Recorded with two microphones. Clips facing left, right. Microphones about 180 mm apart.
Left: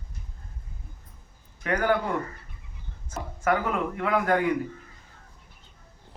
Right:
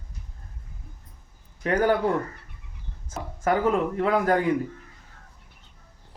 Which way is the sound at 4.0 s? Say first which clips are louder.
Right 2 dB; 30° right (ahead or behind).